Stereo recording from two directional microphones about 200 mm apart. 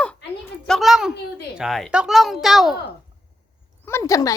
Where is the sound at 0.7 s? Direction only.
Centre (ahead or behind).